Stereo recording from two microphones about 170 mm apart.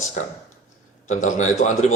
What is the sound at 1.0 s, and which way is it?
Speech, 45° left (ahead or behind).